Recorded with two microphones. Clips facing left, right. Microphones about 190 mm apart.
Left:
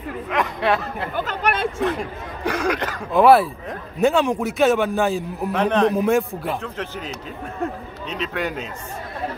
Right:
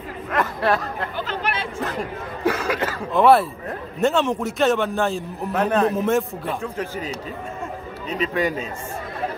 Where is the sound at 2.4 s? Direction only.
5° right (ahead or behind).